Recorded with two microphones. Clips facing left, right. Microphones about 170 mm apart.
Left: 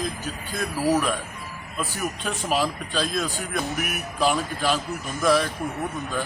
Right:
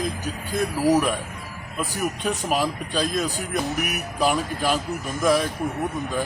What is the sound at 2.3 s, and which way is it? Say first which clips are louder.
Speech: even; 5° right (ahead or behind).